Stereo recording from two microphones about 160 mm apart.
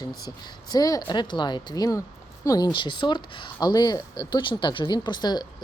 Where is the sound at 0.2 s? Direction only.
25° left (ahead or behind).